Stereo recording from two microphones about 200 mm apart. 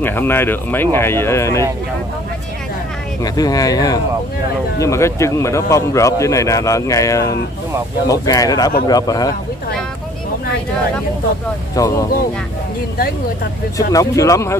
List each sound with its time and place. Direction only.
0.0 s speech: 10° left (ahead or behind)
3.3 s a man's voice: 20° left (ahead or behind)
11.7 s speech: 15° left (ahead or behind)
13.7 s speech: 15° left (ahead or behind)